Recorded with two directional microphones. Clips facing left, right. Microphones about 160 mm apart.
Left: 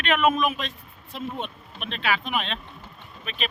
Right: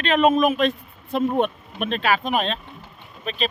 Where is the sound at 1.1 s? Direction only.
55° right (ahead or behind); by 3.4 s 35° right (ahead or behind).